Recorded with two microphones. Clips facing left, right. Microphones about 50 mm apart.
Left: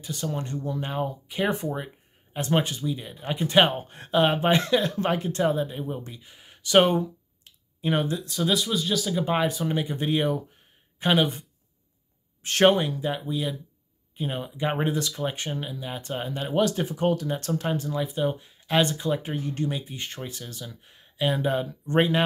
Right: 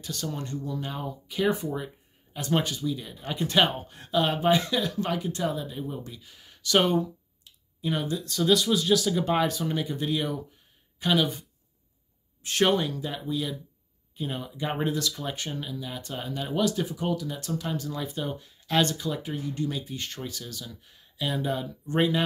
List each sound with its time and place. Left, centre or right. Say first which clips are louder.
0.0 s speech: left 3 dB; centre
3.6 s speech: left 2 dB; left
7.4 s clicking: left 3 dB; left
8.4 s speech: right 3 dB; centre
9.2 s speech: left 1 dB; centre; by 11.4 s left
12.4 s speech: left 5 dB; left
12.7 s speech: left 2 dB; left
17.9 s speech: left 6 dB; centre; by 19.7 s left
19.7 s speech: left 1 dB; left